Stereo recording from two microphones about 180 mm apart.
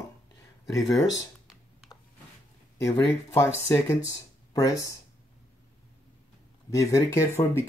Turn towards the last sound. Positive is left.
turn(degrees=15)  # may be behind; listen again after turning